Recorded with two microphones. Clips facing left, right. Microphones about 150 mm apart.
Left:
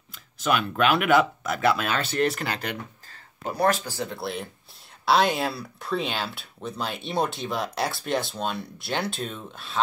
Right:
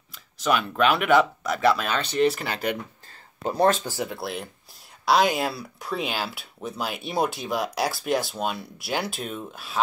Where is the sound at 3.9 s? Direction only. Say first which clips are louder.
Right 2 dB; 15° right (ahead or behind).